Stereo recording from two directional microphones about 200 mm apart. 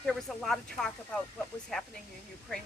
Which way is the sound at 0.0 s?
Centre (ahead or behind).